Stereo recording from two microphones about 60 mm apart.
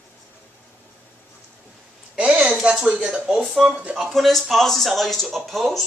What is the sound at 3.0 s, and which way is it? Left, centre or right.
Speech, centre.